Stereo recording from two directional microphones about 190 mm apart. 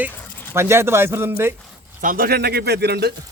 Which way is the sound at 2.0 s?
50° right (ahead or behind).